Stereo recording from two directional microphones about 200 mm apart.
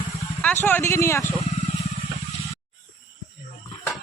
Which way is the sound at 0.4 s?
10° left (ahead or behind).